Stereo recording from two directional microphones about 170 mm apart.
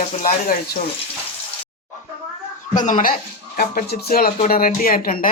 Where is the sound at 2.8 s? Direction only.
45° left (ahead or behind).